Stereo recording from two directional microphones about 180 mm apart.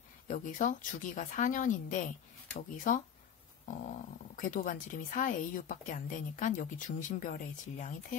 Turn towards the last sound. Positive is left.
turn(degrees=45)  # may be behind; listen again after turning